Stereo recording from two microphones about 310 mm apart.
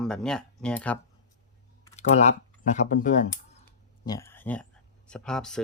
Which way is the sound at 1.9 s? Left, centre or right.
Left.